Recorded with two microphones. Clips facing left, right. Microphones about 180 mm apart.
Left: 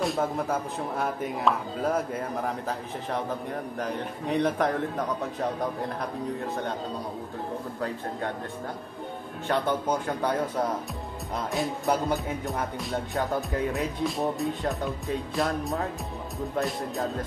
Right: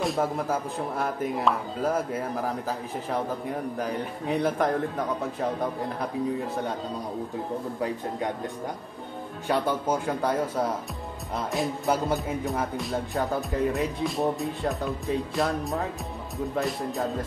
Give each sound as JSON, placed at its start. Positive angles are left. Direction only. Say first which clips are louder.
{"t": 0.0, "sound": "music", "louder": "right 1 dB", "side_deg": 0}
{"t": 3.7, "sound": "music", "louder": "right 1 dB", "side_deg": -5}
{"t": 9.5, "sound": "music", "louder": "right 1 dB", "side_deg": -5}